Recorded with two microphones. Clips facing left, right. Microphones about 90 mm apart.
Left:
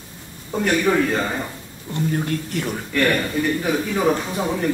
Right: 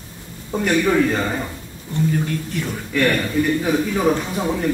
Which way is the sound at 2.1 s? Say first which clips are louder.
Even; 20° left (ahead or behind).